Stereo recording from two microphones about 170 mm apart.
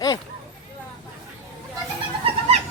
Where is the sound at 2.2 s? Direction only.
35° right (ahead or behind).